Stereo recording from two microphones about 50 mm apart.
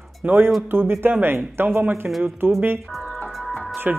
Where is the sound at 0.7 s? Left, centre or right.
Right.